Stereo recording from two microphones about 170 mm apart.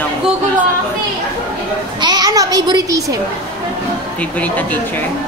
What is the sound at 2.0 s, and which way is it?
A child's voice, 25° right (ahead or behind).